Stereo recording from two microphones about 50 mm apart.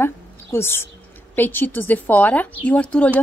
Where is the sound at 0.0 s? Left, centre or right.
Left.